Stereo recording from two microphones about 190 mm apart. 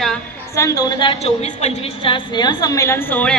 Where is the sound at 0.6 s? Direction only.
20° left (ahead or behind).